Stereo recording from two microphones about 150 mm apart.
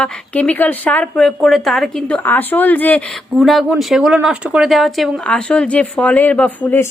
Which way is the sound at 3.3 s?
Centre (ahead or behind).